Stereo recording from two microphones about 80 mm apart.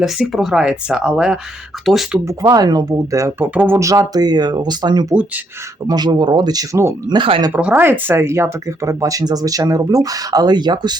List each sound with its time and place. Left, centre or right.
0.0 s speech: centre
2.2 s speech: right
3.2 s speech: right
3.4 s speech: right
3.8 s speech: right
7.1 s speech: right
7.5 s speech: right